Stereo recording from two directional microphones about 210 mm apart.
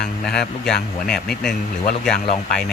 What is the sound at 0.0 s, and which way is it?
Speech, 5° left (ahead or behind).